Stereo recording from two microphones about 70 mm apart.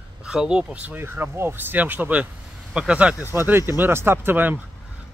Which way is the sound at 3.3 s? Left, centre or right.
Right.